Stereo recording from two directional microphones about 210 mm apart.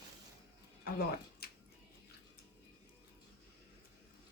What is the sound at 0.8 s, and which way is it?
Speech, 50° left (ahead or behind).